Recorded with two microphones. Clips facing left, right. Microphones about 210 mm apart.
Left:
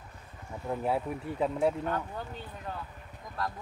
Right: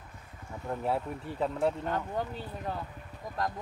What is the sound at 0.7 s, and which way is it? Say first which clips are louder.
Speech: left 1 dB; centre (ahead or behind).